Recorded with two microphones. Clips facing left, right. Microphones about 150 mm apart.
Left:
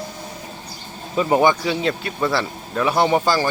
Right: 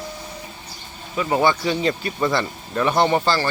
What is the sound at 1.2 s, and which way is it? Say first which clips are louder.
Speech: left 3 dB; 25° left (ahead or behind).